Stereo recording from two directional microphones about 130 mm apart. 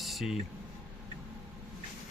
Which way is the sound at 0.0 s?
Centre (ahead or behind).